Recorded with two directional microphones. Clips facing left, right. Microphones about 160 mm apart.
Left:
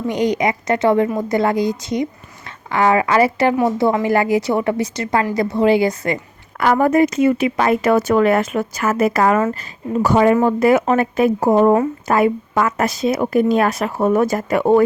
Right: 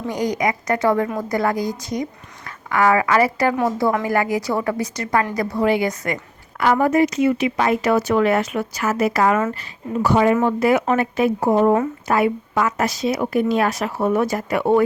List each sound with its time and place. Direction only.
0.1 s a woman's voice: 25° left (ahead or behind)
6.6 s a woman's voice: 50° left (ahead or behind)